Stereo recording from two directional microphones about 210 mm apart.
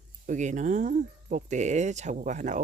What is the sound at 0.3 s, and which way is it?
Speech, 35° right (ahead or behind).